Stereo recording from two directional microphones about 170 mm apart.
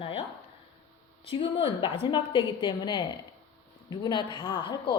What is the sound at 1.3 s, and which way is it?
A woman's voice, 30° left (ahead or behind).